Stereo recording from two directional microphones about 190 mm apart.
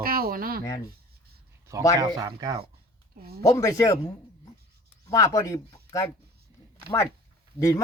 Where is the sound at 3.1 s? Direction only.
55° right (ahead or behind).